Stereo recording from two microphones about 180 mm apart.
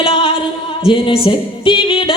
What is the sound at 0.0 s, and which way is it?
Music, 30° left (ahead or behind).